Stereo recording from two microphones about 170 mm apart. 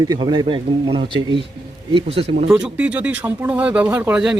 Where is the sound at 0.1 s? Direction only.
25° right (ahead or behind).